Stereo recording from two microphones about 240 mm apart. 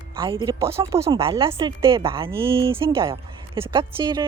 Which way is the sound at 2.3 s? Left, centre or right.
Centre.